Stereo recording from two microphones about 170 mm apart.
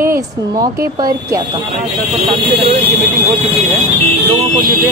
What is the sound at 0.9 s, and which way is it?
Speech, 20° right (ahead or behind).